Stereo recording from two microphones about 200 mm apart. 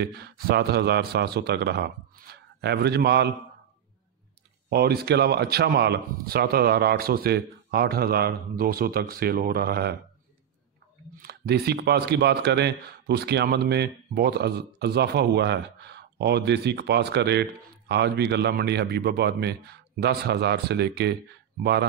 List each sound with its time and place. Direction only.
0.0 s speech: 50° right (ahead or behind)
4.6 s speech: 55° right (ahead or behind)
11.2 s speech: 55° right (ahead or behind)